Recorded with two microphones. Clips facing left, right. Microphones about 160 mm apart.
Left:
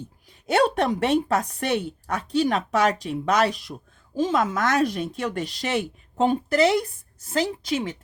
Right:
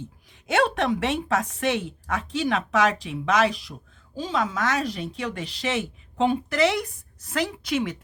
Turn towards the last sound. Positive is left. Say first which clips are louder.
# even
turn(degrees=30)  # may be behind; listen again after turning